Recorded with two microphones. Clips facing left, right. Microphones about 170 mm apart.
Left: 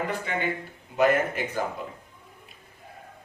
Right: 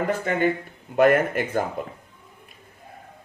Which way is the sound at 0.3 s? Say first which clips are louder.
Right 7 dB; 50° right (ahead or behind).